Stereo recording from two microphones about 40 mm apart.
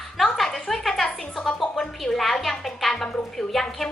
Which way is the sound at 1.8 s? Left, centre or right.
Centre.